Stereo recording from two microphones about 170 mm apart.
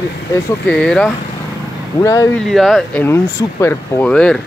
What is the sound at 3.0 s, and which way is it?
Speech, 15° left (ahead or behind).